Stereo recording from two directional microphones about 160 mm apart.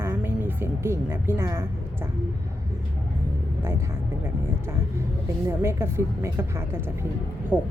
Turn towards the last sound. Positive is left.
turn(degrees=-10)  # may be behind; listen again after turning